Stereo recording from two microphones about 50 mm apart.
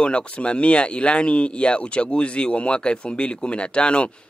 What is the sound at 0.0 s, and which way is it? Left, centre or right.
Speech, left.